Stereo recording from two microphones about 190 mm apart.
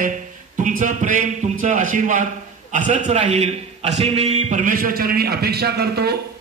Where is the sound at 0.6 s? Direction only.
45° right (ahead or behind).